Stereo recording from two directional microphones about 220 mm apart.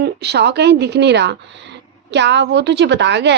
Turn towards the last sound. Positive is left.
turn(degrees=-50)  # may be behind; listen again after turning